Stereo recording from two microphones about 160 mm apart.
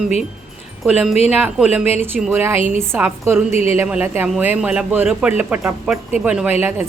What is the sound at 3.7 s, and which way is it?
A man's voice, 10° right (ahead or behind).